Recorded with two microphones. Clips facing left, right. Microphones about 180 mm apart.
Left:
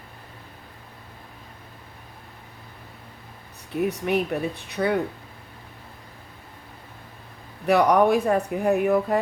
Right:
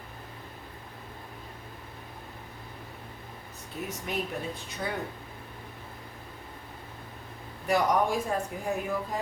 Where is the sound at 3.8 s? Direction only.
65° left (ahead or behind).